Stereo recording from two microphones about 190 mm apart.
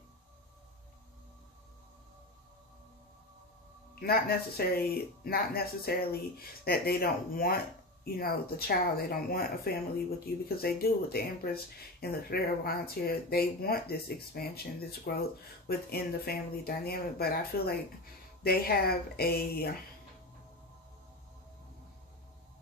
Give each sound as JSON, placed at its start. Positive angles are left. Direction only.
{"t": 4.0, "sound": "speech", "side_deg": 55}